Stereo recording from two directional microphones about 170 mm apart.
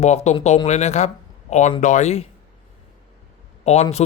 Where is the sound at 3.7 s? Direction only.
40° left (ahead or behind).